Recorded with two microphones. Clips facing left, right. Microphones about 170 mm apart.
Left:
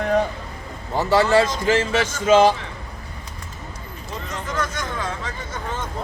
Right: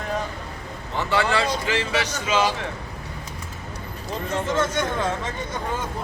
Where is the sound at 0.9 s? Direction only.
40° left (ahead or behind).